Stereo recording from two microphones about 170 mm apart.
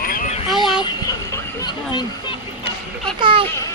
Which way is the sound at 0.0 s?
60° left (ahead or behind).